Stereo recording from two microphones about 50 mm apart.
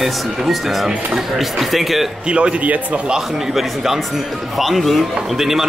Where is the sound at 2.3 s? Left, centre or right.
Right.